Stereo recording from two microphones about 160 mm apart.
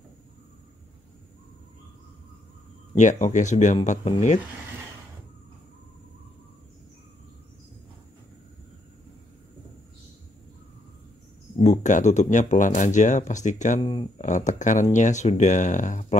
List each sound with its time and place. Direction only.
3.0 s speech: 50° left (ahead or behind)
11.6 s speech: 45° left (ahead or behind)
13.7 s speech: 30° left (ahead or behind)
14.1 s speech: 50° left (ahead or behind)